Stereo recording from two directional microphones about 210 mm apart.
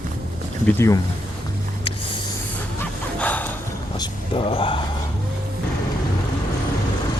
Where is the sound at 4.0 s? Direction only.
25° left (ahead or behind).